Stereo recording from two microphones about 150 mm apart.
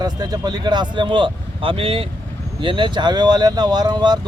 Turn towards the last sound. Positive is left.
turn(degrees=-30)  # may be behind; listen again after turning